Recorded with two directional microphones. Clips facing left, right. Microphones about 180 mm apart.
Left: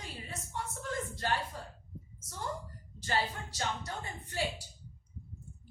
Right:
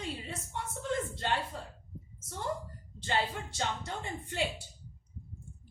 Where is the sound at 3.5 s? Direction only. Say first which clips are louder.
Right 2 dB; 25° right (ahead or behind).